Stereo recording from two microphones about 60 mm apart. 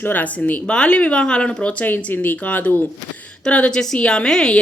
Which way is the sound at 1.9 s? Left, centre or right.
Left.